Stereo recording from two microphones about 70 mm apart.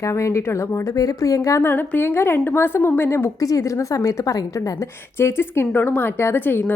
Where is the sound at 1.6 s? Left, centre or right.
Left.